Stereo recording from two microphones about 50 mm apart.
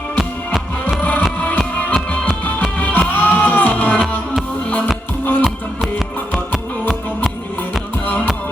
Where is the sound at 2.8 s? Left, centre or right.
Left.